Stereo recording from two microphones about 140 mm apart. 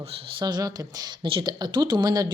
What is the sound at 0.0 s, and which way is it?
Speech, 45° right (ahead or behind).